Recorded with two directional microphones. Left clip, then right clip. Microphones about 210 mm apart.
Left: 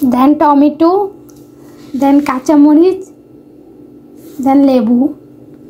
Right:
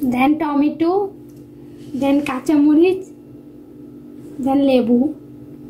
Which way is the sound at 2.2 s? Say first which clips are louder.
Left 7 dB; 30° left (ahead or behind).